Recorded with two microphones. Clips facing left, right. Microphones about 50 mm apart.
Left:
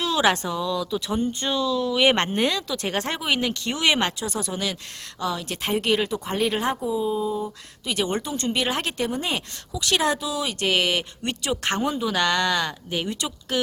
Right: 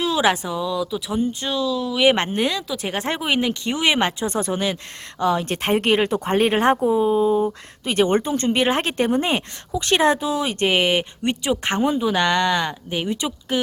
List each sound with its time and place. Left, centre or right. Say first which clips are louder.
0.0 s speech: right 2 dB; centre
4.2 s speech: right 5 dB; right